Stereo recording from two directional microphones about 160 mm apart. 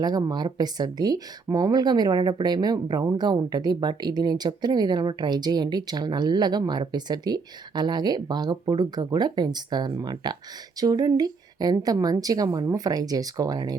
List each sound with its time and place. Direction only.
0.0 s speech: 25° right (ahead or behind)